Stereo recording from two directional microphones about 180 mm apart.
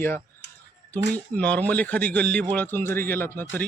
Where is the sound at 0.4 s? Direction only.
70° left (ahead or behind).